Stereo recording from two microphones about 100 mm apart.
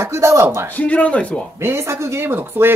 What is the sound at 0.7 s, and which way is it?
Speech, 15° left (ahead or behind).